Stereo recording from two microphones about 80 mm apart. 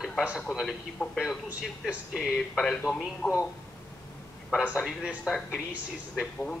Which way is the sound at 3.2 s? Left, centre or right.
Centre.